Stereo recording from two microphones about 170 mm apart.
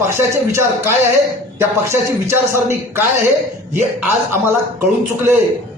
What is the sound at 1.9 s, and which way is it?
Speech, 15° right (ahead or behind).